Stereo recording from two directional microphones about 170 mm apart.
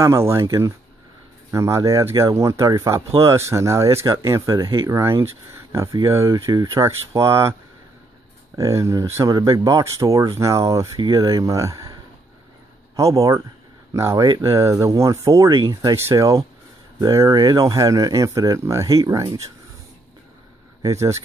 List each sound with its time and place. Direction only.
0.0 s speech: 15° right (ahead or behind)
8.5 s speech: 20° right (ahead or behind)
20.8 s speech: 15° right (ahead or behind)